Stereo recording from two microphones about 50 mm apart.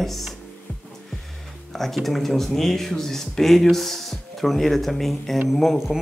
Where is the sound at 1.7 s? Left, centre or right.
Centre.